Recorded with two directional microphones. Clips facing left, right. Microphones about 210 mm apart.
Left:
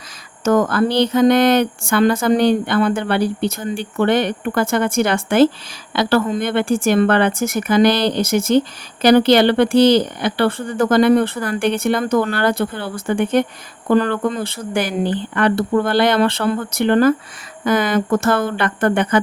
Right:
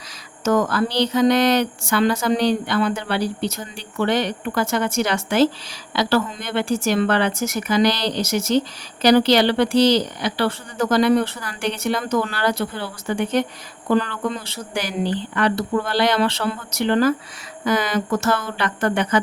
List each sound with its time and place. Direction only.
0.4 s speech: 55° left (ahead or behind)